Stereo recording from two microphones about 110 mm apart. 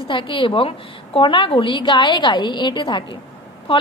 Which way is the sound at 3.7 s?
55° left (ahead or behind).